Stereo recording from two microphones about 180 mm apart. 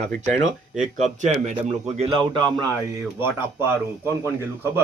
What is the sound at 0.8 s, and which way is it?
Speech, 40° right (ahead or behind).